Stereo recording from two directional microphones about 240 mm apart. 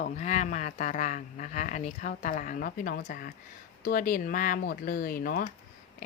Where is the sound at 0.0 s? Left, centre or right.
Left.